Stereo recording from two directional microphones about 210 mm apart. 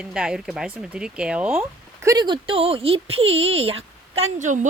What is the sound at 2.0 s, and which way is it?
A woman's voice, 15° right (ahead or behind).